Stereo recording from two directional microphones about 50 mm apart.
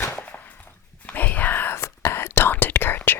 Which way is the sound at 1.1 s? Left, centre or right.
Left.